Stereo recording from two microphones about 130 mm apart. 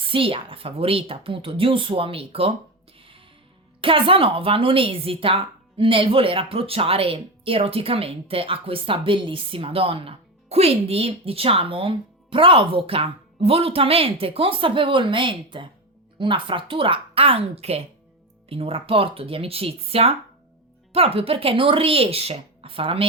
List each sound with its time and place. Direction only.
0.0 s a woman's voice: 45° right (ahead or behind)
3.0 s music: 40° right (ahead or behind)
3.8 s a woman's voice: 40° right (ahead or behind)